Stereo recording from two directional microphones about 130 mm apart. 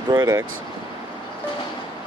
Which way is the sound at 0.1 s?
25° right (ahead or behind).